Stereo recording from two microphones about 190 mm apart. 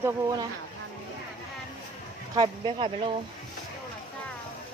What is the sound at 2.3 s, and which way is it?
Speech, 25° right (ahead or behind).